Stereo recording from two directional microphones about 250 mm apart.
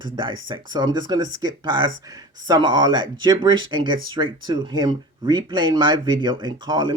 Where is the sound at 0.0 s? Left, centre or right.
Centre.